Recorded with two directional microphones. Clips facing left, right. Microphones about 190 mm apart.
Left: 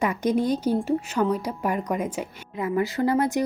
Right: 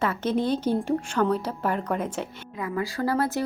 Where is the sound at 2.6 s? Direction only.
25° left (ahead or behind).